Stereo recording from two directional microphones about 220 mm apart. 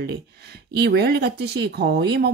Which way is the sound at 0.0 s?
50° right (ahead or behind).